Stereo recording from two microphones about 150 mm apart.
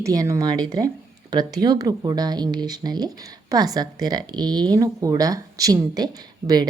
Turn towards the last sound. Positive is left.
turn(degrees=-30)  # may be behind; listen again after turning